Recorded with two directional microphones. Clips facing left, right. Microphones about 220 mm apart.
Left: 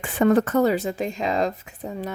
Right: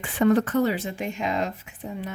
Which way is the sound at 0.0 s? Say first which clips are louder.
Left 2 dB; 45° left (ahead or behind).